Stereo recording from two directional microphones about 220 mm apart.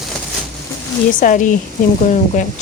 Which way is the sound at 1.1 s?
35° left (ahead or behind).